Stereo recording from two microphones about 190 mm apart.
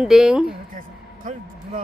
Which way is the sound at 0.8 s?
45° right (ahead or behind).